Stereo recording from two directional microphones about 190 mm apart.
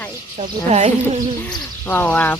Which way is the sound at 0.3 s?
35° right (ahead or behind).